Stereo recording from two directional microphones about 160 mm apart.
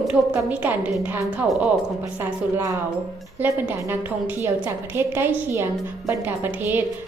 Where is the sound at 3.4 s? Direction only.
10° right (ahead or behind).